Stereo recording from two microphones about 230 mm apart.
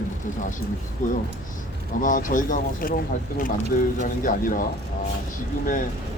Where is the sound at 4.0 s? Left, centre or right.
Left.